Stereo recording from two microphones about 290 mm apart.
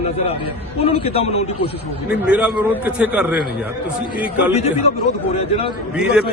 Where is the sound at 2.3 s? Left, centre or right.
Centre.